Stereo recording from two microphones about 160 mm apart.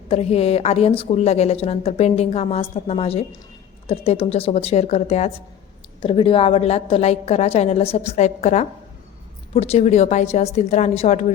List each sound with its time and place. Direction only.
0.1 s a woman's voice: 40° left (ahead or behind)